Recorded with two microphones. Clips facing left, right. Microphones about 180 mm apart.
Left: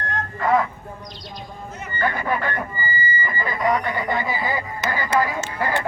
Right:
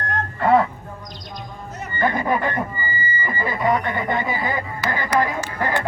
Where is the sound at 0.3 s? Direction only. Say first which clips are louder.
Right 3 dB; 30° right (ahead or behind).